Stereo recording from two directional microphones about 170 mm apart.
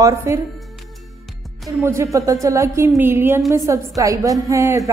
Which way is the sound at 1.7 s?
15° right (ahead or behind).